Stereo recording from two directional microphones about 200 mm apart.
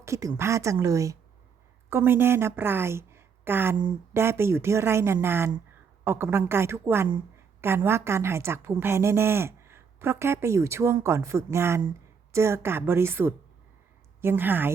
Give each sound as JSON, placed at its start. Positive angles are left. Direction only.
{"t": 0.0, "sound": "a woman's voice", "side_deg": -15}